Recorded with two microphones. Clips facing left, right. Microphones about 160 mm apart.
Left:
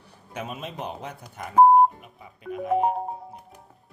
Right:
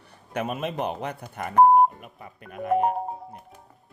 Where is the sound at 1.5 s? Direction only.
Centre (ahead or behind).